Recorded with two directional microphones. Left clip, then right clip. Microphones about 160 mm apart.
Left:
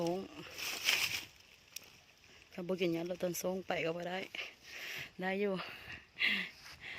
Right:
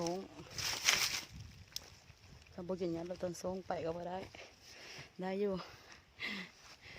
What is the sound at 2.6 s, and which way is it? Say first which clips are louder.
Speech: left 4 dB; 20° left (ahead or behind).